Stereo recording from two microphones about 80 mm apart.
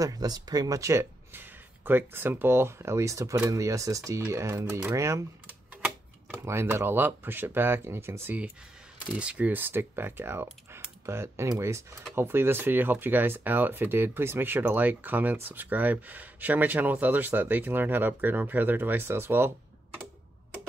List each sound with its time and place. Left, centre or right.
0.0 s speech: right
1.3 s speech: right
5.5 s typewriter: centre
6.3 s speech: right
9.1 s speech: centre